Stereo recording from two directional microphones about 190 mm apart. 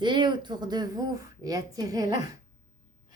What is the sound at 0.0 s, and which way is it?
A woman's voice, 25° right (ahead or behind).